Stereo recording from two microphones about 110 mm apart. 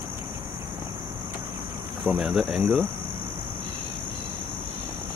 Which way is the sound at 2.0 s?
5° right (ahead or behind).